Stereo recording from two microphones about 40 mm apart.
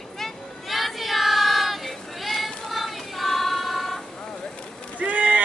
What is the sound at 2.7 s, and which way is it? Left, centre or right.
Female singing, centre.